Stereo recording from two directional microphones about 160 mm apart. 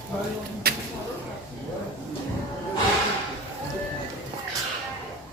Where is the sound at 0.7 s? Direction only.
75° right (ahead or behind).